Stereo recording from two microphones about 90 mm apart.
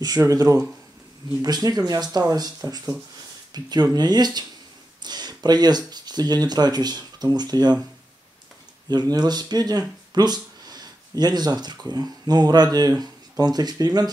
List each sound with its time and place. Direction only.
0.2 s speech: 40° right (ahead or behind)
8.8 s speech: 50° right (ahead or behind)